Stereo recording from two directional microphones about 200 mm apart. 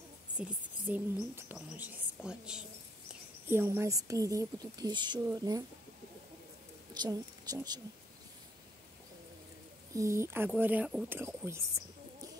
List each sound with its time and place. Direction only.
0.4 s a woman's voice: 10° right (ahead or behind)
6.9 s a woman's voice: 20° right (ahead or behind)
9.9 s a woman's voice: 15° right (ahead or behind)